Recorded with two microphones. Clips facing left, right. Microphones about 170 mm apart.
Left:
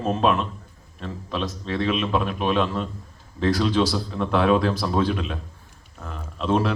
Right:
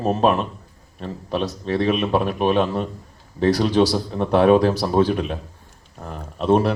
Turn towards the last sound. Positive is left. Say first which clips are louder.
# right 5 dB
turn(degrees=-40)  # may be behind; listen again after turning